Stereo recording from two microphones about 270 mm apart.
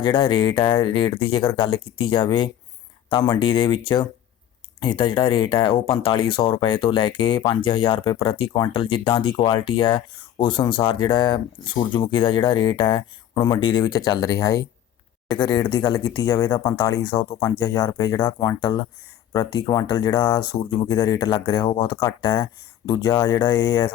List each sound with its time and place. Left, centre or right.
0.0 s speech: centre